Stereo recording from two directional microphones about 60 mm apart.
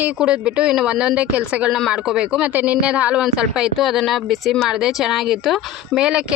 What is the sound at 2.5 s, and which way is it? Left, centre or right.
Speech, right.